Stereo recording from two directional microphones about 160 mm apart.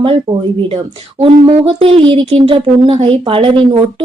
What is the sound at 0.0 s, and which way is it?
Speech, 35° right (ahead or behind).